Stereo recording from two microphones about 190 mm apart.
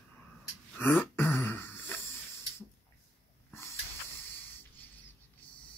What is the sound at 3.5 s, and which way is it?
Hiss, 15° left (ahead or behind).